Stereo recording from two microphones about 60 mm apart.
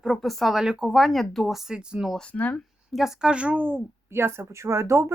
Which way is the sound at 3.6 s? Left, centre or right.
Right.